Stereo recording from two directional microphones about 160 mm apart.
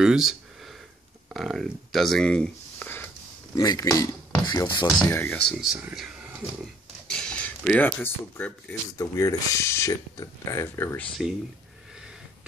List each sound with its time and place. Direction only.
0.0 s a sound: 5° right (ahead or behind)
1.3 s speech: centre (ahead or behind)
3.5 s speech: 20° left (ahead or behind)
4.8 s speech: 10° left (ahead or behind); by 6.1 s 5° right (ahead or behind)
6.6 s speech: 5° left (ahead or behind)